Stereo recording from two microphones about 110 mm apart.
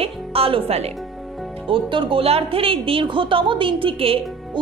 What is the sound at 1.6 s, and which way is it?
A woman's voice, 50° right (ahead or behind).